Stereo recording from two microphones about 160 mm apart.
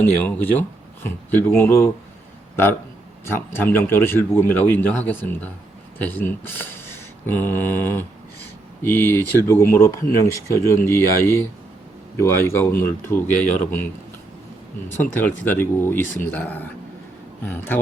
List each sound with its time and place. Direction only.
0.0 s speech: 10° left (ahead or behind)
3.2 s speech: 15° left (ahead or behind)
14.8 s speech: 10° left (ahead or behind)